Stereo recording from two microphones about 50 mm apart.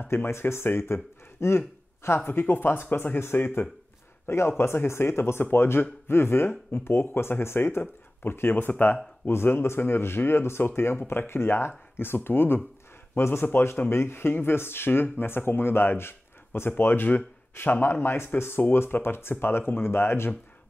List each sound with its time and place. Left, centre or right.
0.1 s speech: left
2.1 s speech: left
4.3 s speech: left
7.8 s speech: left
9.3 s speech: left